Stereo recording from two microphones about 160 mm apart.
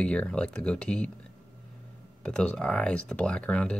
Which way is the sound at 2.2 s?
5° left (ahead or behind).